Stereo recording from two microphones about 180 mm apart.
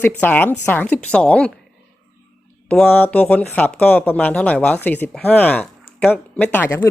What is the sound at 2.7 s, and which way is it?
Speech, 10° left (ahead or behind).